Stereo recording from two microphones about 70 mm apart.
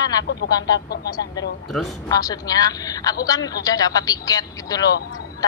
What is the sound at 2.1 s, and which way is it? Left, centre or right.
A woman's voice, left.